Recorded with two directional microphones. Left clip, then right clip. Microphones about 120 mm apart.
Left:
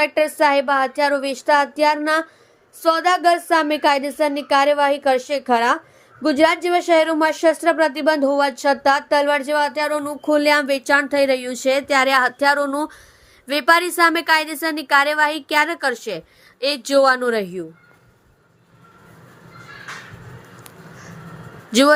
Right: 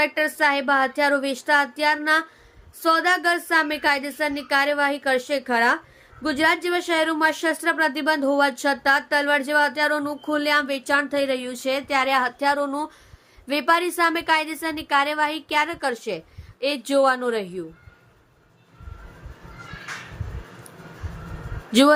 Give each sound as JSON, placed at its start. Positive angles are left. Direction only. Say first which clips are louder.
{"t": 0.0, "sound": "a woman's voice", "louder": "left 4 dB", "side_deg": 35}
{"t": 21.7, "sound": "speech", "louder": "left 2 dB", "side_deg": 25}